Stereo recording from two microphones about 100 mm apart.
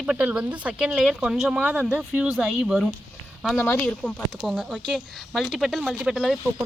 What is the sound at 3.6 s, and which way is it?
Speech, 20° left (ahead or behind).